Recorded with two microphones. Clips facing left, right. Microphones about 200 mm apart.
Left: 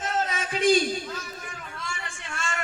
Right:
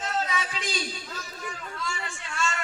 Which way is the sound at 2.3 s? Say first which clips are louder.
Right 3 dB; 50° left (ahead or behind).